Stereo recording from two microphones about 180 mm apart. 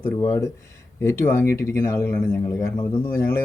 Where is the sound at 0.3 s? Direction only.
15° left (ahead or behind).